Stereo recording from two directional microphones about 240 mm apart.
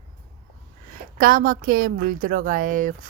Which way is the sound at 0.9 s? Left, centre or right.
Right.